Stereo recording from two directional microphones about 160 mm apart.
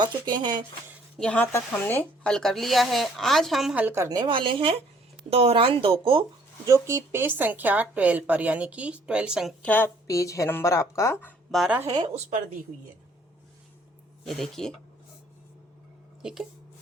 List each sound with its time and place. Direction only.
0.0 s speech: 30° right (ahead or behind)
1.2 s speech: 10° left (ahead or behind)
3.8 s a woman's voice: 15° right (ahead or behind); by 6.2 s 35° right (ahead or behind)
6.7 s a woman's voice: 20° right (ahead or behind)
9.6 s speech: 15° left (ahead or behind)
11.5 s speech: 5° right (ahead or behind)
11.9 s speech: 25° right (ahead or behind)
14.3 s speech: centre (ahead or behind)
16.2 s speech: 5° right (ahead or behind)